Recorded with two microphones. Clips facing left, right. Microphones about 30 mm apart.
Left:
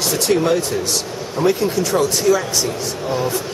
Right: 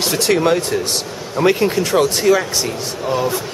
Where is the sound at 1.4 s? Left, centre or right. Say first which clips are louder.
Right 2 dB; right.